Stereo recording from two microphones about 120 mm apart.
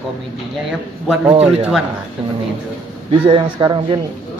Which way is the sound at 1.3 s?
55° right (ahead or behind).